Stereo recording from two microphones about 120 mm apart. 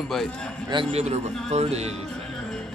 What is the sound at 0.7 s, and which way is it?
Speech, 50° right (ahead or behind).